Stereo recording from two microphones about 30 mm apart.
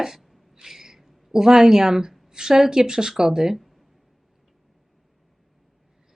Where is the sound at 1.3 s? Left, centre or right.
Centre.